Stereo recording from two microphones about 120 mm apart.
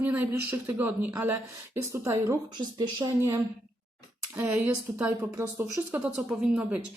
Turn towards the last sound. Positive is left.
turn(degrees=-10)  # may be behind; listen again after turning